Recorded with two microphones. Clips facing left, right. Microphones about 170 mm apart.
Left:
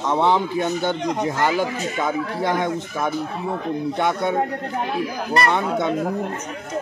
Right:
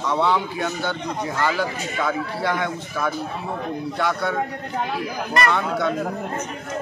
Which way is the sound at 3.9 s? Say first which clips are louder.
Left 1 dB; 20° left (ahead or behind).